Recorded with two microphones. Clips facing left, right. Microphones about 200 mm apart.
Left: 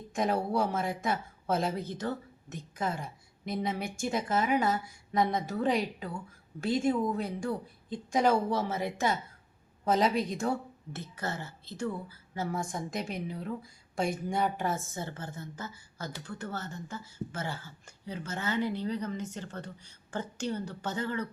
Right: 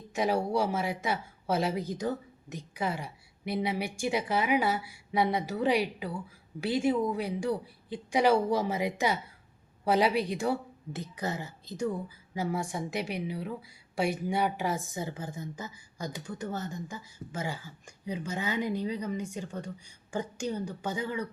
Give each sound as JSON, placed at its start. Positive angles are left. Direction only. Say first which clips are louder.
{"t": 0.1, "sound": "a woman's voice", "louder": "right 1 dB", "side_deg": -5}